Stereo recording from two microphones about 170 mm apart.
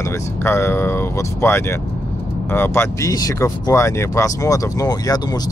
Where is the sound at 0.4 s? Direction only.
15° left (ahead or behind).